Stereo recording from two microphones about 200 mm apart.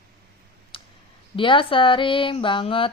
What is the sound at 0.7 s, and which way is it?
Clicking, 25° left (ahead or behind).